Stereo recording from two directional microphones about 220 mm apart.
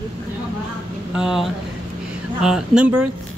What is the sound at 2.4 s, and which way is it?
Speech, 5° right (ahead or behind).